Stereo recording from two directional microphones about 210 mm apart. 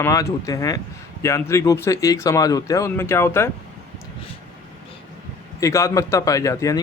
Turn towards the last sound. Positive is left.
turn(degrees=15)  # may be behind; listen again after turning